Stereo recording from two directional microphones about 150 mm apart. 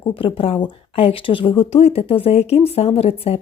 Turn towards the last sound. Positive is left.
turn(degrees=40)  # may be behind; listen again after turning